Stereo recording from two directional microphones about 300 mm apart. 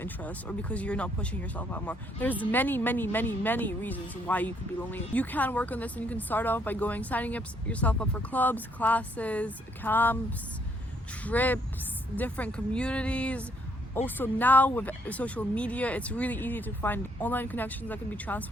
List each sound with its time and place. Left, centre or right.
0.0 s speech: centre
11.2 s speech: centre